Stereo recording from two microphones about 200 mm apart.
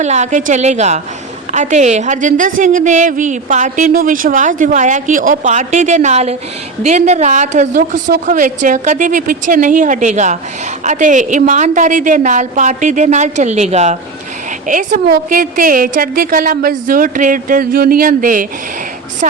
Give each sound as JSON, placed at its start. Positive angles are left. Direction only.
{"t": 0.0, "sound": "a woman's voice", "side_deg": -35}